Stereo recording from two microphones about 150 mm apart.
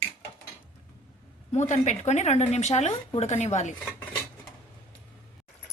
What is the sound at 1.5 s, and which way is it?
A woman's voice, 50° left (ahead or behind).